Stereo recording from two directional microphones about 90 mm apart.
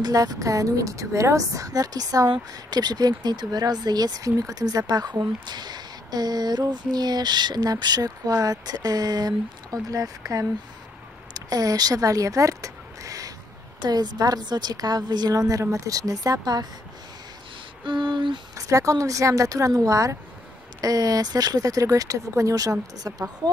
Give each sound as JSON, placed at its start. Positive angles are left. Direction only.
{"t": 0.0, "sound": "a woman's voice", "side_deg": -45}
{"t": 13.7, "sound": "a woman's voice", "side_deg": -50}
{"t": 17.8, "sound": "a sound", "side_deg": -65}
{"t": 18.6, "sound": "a woman's voice", "side_deg": -40}